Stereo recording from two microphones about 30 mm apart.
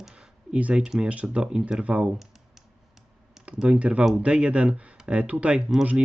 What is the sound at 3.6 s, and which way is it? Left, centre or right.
Speech, right.